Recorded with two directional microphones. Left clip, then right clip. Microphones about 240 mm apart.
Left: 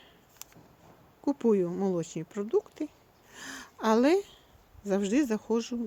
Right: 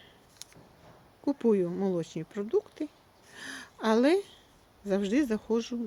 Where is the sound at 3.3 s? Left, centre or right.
Centre.